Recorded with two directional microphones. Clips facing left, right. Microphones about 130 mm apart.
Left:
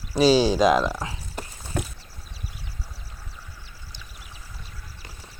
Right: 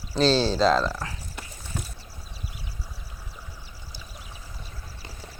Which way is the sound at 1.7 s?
60° left (ahead or behind).